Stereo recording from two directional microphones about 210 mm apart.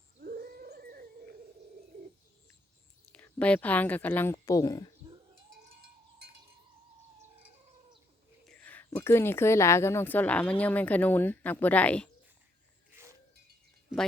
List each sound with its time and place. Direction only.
0.2 s a sound: 45° right (ahead or behind)
3.1 s speech: 5° left (ahead or behind)
8.4 s a woman's voice: 5° left (ahead or behind)